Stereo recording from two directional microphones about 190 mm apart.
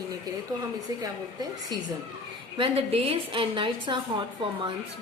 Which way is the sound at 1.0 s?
20° right (ahead or behind).